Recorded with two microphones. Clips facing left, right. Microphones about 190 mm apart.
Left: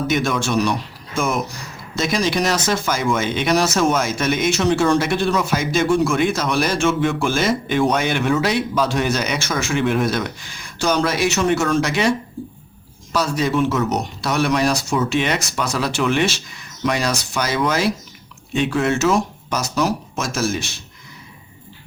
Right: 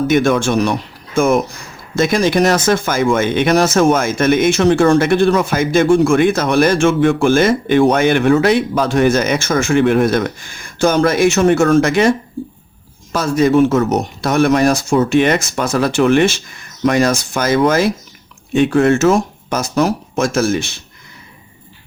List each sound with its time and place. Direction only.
0.1 s speech: 55° right (ahead or behind)
13.1 s speech: 50° right (ahead or behind)